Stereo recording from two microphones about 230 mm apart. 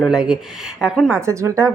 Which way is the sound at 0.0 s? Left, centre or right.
Centre.